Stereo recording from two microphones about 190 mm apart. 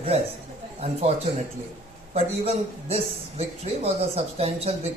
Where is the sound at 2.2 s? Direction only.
30° right (ahead or behind).